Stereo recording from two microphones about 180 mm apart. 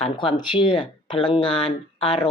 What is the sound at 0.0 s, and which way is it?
Speech, 30° left (ahead or behind).